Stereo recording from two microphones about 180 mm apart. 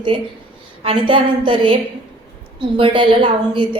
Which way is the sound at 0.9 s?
30° right (ahead or behind).